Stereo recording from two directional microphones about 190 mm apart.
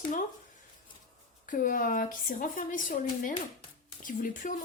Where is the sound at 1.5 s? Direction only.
45° left (ahead or behind).